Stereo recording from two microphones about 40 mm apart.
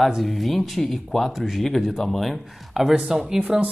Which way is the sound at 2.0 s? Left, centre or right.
Centre.